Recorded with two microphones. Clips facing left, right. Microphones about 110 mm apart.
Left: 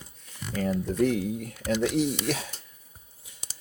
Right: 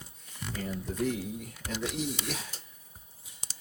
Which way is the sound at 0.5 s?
90° left.